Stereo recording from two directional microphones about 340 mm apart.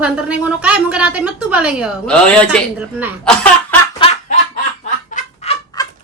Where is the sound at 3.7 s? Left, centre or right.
Centre.